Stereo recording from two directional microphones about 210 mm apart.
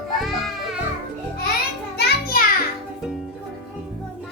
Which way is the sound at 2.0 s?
50° left (ahead or behind).